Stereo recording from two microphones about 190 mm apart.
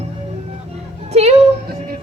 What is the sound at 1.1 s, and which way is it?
Speech, 35° right (ahead or behind).